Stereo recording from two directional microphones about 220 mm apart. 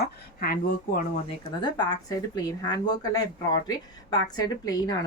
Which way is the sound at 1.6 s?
20° left (ahead or behind).